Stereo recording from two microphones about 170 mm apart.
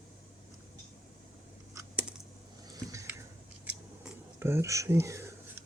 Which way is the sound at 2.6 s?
20° right (ahead or behind).